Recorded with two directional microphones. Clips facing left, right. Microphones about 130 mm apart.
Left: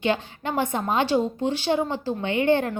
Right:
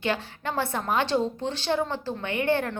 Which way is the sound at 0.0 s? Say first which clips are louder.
Left 4 dB; 15° left (ahead or behind).